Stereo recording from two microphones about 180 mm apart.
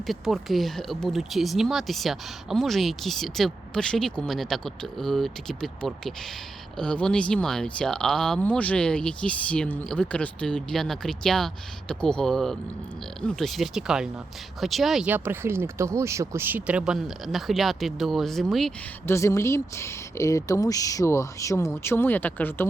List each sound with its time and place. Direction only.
0.1 s speech: centre (ahead or behind)
19.0 s speech: 15° left (ahead or behind)